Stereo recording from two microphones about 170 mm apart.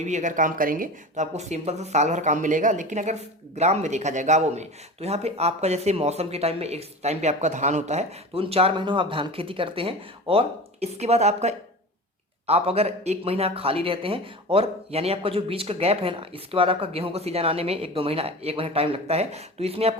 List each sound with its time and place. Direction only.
0.0 s speech: 45° right (ahead or behind)